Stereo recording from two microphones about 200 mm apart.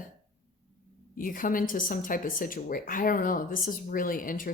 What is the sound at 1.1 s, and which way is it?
Speech, 45° left (ahead or behind).